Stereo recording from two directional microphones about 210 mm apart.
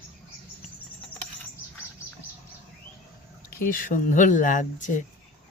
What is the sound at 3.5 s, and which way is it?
Speech, 40° left (ahead or behind).